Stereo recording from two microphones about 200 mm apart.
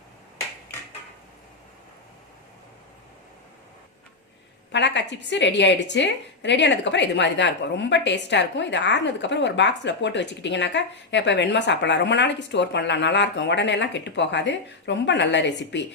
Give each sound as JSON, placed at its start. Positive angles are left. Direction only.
{"t": 4.7, "sound": "a woman's voice", "side_deg": 60}